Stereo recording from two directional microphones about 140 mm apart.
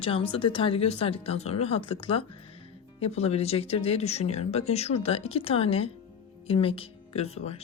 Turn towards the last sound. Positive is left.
turn(degrees=45)  # may be behind; listen again after turning